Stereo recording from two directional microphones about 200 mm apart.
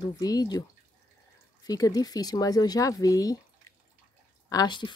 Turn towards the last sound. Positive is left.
turn(degrees=20)  # may be behind; listen again after turning